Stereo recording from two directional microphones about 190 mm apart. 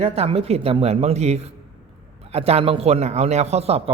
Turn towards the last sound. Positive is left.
turn(degrees=-30)  # may be behind; listen again after turning